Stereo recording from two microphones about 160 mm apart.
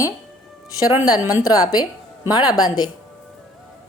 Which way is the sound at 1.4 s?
25° left (ahead or behind).